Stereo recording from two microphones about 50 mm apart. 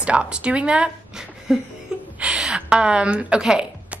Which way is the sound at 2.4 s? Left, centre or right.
Centre.